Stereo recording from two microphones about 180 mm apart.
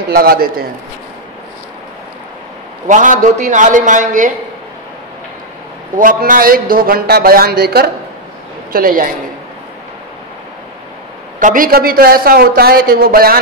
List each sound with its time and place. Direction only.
0.1 s a man's voice: 55° right (ahead or behind)
2.9 s a woman's voice: 45° right (ahead or behind)
5.9 s a man's voice: 50° right (ahead or behind)
8.7 s a woman's voice: 50° right (ahead or behind)
11.3 s a man's voice: 50° right (ahead or behind)